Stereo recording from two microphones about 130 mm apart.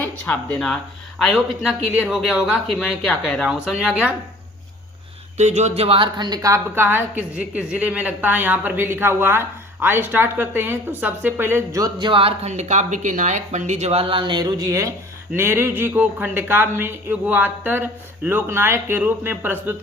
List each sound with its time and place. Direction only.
1.2 s a woman's voice: centre (ahead or behind)
5.4 s a woman's voice: 60° right (ahead or behind); by 19.7 s 15° right (ahead or behind)